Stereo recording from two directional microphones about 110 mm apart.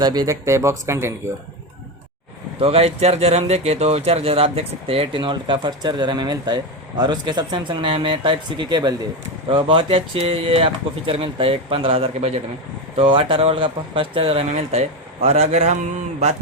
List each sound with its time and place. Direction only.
0.0 s speech: 35° right (ahead or behind)
2.6 s speech: 60° right (ahead or behind); by 9.0 s 40° right (ahead or behind)
9.5 s speech: 55° right (ahead or behind)
13.0 s speech: 50° right (ahead or behind)
14.5 s a man's voice: 75° right (ahead or behind)